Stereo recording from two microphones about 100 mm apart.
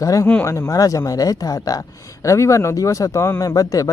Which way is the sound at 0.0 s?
35° left (ahead or behind).